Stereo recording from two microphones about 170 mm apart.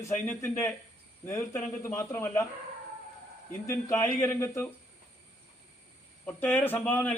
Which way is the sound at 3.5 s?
15° left (ahead or behind).